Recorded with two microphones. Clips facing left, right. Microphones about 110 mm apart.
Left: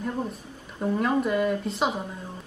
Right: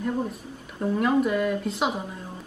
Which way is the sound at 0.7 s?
5° left (ahead or behind).